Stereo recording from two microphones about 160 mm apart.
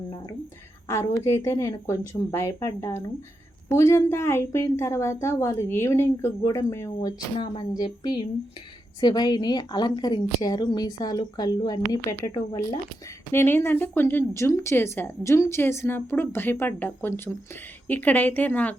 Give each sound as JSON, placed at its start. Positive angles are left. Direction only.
{"t": 0.9, "sound": "a woman's voice", "side_deg": 20}
{"t": 7.3, "sound": "a woman's voice", "side_deg": 30}